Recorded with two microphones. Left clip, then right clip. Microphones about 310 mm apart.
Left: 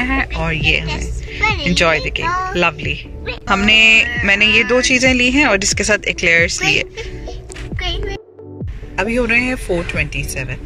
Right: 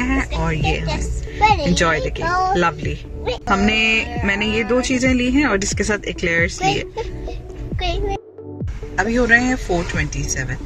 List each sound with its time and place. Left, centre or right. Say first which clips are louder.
0.0 s speech: left 3 dB; centre
1.4 s a woman's voice: right 2 dB; centre
1.7 s speech: left 4 dB; centre
7.7 s music: left 1 dB; centre
8.9 s speech: even; centre